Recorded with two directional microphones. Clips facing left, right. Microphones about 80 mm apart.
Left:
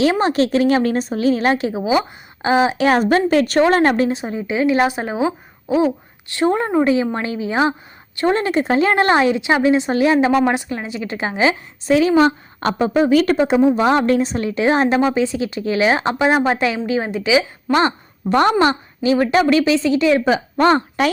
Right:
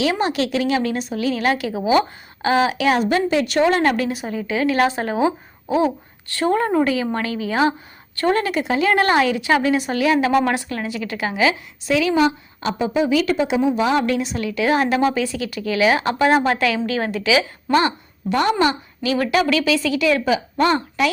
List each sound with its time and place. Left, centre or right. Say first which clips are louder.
0.0 s a woman's voice: left 4 dB; left
2.7 s a woman's voice: left 3 dB; left
12.5 s a woman's voice: left 5 dB; left